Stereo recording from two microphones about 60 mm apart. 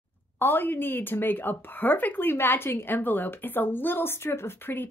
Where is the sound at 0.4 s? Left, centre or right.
Left.